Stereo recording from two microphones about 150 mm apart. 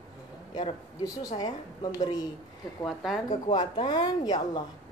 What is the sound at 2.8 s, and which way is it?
Speech, centre (ahead or behind).